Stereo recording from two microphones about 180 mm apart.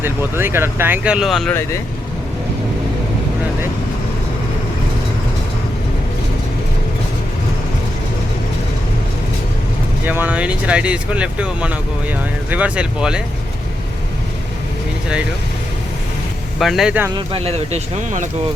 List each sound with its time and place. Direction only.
0.0 s speech: 10° right (ahead or behind)
10.1 s speech: 10° right (ahead or behind)
16.6 s speech: centre (ahead or behind)
17.2 s speech: 30° right (ahead or behind)